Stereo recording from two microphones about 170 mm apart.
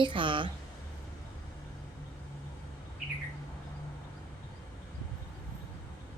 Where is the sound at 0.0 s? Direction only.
30° right (ahead or behind).